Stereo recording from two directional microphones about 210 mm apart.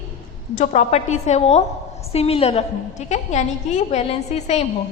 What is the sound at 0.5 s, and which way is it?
A woman's voice, 35° left (ahead or behind).